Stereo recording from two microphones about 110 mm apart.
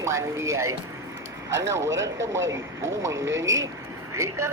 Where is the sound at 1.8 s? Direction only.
25° right (ahead or behind).